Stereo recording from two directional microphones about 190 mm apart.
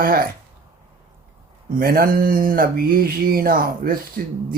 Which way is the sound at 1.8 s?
50° right (ahead or behind).